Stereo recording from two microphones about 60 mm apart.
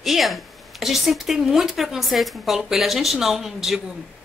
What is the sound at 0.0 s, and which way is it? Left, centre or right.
A woman's voice, centre.